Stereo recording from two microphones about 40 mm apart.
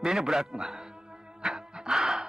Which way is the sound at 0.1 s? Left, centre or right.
Centre.